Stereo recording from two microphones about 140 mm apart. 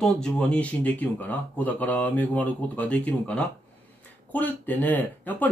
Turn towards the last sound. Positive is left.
turn(degrees=10)  # may be behind; listen again after turning